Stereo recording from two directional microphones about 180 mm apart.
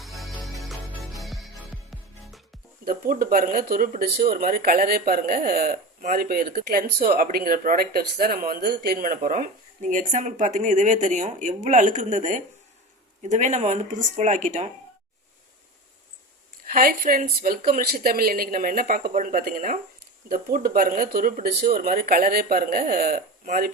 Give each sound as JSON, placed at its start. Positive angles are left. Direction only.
{"t": 0.0, "sound": "music", "side_deg": 0}
{"t": 2.8, "sound": "speech", "side_deg": -55}
{"t": 16.6, "sound": "speech", "side_deg": -50}